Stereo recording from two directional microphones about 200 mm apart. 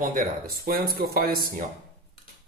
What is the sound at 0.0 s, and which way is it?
Speech, 45° right (ahead or behind).